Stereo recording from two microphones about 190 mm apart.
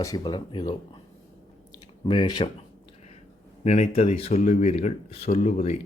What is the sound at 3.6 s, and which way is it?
Speech, 35° left (ahead or behind).